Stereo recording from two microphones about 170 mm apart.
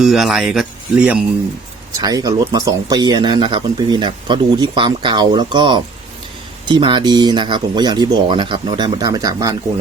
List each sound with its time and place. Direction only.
0.0 s speech: centre (ahead or behind)
2.0 s speech: 20° right (ahead or behind)